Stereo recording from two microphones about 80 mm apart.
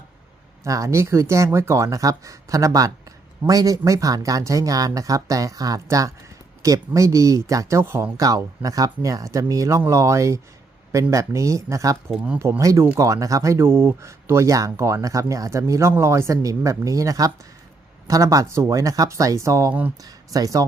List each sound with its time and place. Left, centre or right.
0.6 s speech: right
8.1 s speech: right